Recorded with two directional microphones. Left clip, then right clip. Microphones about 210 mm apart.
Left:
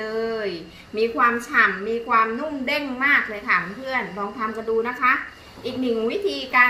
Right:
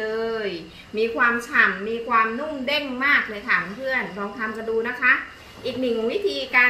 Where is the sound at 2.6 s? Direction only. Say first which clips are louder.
Even; 15° left (ahead or behind).